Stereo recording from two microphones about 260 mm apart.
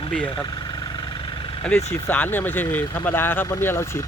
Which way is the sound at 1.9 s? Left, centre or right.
Centre.